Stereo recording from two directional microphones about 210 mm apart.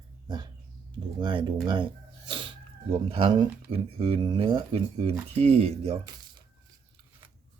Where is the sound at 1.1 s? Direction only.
20° right (ahead or behind).